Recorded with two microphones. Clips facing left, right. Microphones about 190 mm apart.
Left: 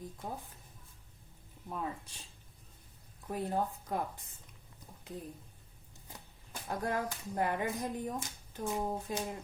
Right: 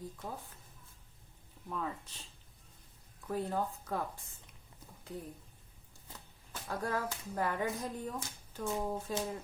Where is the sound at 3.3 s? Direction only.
15° left (ahead or behind).